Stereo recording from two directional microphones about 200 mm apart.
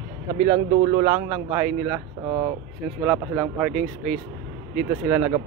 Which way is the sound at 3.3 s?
Centre (ahead or behind).